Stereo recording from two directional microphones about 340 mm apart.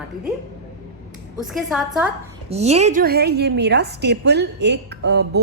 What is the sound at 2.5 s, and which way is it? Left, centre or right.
A woman's voice, centre.